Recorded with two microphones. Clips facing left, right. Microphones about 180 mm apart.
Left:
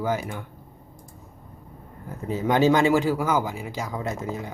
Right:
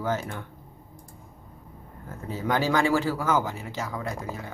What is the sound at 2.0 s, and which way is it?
Speech, 20° left (ahead or behind).